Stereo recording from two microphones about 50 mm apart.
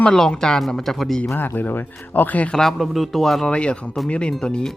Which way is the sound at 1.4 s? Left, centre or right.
Left.